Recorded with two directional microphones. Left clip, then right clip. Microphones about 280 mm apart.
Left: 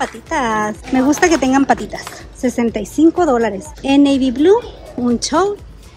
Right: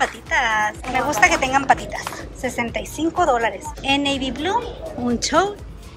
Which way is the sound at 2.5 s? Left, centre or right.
Left.